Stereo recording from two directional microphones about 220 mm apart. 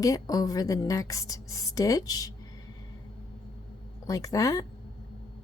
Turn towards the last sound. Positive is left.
turn(degrees=15)  # may be behind; listen again after turning